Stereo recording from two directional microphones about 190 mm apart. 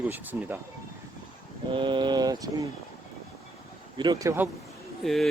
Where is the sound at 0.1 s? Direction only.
10° right (ahead or behind).